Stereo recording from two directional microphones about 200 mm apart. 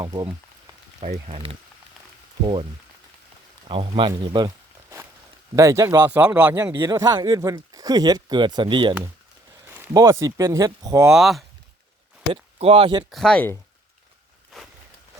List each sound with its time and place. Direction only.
0.0 s a sound: 20° right (ahead or behind)
1.0 s speech: 35° right (ahead or behind)
3.7 s speech: 25° right (ahead or behind)
4.2 s a sound: 20° right (ahead or behind)
5.5 s speech: 15° right (ahead or behind)
11.1 s speech: centre (ahead or behind)
12.3 s speech: 30° right (ahead or behind)
13.1 s speech: centre (ahead or behind)